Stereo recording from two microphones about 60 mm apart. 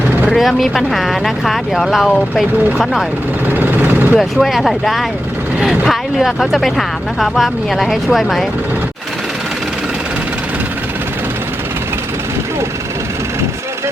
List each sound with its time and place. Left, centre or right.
0.3 s speech: centre
3.5 s vehicle: right
4.2 s speech: centre
5.5 s speech: centre
5.8 s speech: centre